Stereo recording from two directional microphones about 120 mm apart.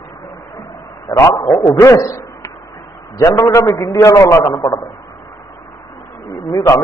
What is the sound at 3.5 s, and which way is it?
A man's voice, 25° left (ahead or behind).